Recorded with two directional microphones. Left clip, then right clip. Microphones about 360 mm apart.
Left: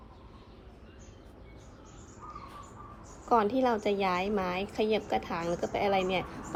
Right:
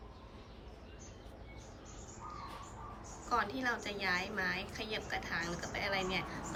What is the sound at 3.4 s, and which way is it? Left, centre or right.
A woman's voice, centre.